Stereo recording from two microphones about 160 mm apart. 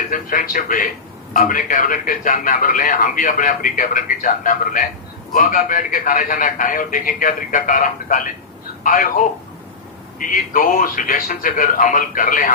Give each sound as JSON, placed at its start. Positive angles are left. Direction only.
{"t": 0.1, "sound": "a man's voice", "side_deg": 60}